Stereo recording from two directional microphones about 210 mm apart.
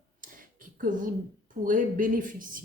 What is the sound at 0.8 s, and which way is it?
Speech, 40° right (ahead or behind).